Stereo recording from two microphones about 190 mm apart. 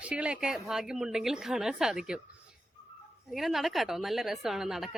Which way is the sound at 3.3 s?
Centre (ahead or behind).